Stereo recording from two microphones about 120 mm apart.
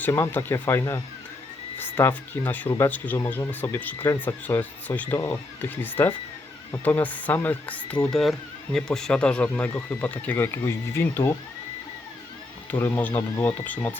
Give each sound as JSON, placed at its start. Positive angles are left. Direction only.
{"t": 0.0, "sound": "speech", "side_deg": 20}
{"t": 8.1, "sound": "speech", "side_deg": 0}
{"t": 12.7, "sound": "speech", "side_deg": 10}